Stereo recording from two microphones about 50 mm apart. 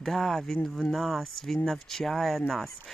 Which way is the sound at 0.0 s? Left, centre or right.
Centre.